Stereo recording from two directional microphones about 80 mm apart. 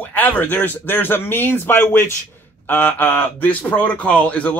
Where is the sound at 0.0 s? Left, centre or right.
Left.